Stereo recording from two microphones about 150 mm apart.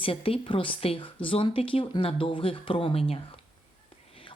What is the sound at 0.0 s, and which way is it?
Speech, 40° left (ahead or behind).